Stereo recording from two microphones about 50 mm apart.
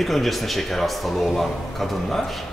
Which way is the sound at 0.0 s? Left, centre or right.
Centre.